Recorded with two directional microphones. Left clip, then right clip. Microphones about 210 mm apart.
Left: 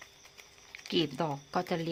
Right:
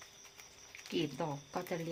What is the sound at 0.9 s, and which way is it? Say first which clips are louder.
Speech: left 6 dB; 35° left (ahead or behind).